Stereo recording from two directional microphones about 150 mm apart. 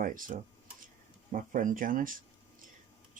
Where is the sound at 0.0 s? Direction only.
65° right (ahead or behind).